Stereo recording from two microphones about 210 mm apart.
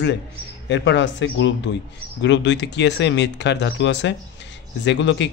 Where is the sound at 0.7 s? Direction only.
55° left (ahead or behind).